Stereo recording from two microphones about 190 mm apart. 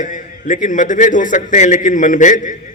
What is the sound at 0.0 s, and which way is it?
A man's voice, 40° left (ahead or behind).